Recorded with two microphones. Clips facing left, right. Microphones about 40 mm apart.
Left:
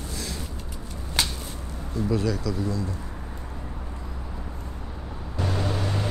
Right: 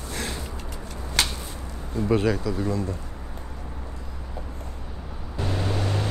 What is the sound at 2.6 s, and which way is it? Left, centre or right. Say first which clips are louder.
Speech: right 2 dB; right.